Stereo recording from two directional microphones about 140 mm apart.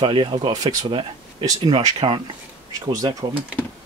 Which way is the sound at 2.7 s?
25° right (ahead or behind).